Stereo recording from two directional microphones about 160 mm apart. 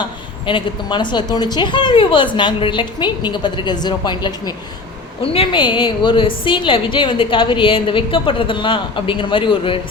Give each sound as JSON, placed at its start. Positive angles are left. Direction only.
{"t": 0.4, "sound": "a woman's voice", "side_deg": 30}